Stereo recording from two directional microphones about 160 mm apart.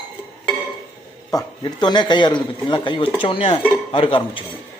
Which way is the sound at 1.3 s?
25° left (ahead or behind).